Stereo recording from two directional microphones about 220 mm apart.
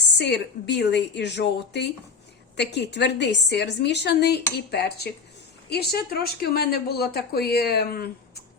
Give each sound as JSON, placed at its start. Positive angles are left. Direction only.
{"t": 0.0, "sound": "speech", "side_deg": 50}